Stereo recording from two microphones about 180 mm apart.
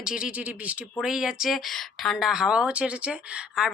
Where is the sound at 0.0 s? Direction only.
5° right (ahead or behind).